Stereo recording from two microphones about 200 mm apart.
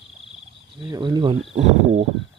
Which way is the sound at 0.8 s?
20° right (ahead or behind).